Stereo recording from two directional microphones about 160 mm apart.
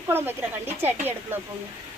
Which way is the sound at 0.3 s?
15° right (ahead or behind).